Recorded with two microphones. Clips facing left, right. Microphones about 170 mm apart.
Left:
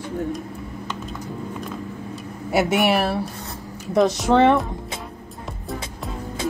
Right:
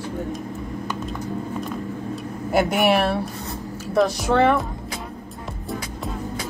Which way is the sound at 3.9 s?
20° left (ahead or behind).